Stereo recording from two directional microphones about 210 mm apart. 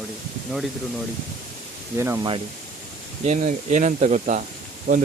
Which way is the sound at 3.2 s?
35° right (ahead or behind).